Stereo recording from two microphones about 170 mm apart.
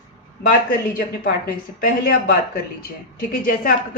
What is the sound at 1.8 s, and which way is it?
A woman's voice, 55° left (ahead or behind).